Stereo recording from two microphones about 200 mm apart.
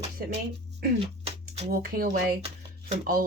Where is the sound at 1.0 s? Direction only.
30° right (ahead or behind).